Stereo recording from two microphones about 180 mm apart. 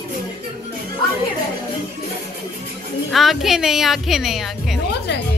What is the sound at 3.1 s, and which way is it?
Music, centre (ahead or behind).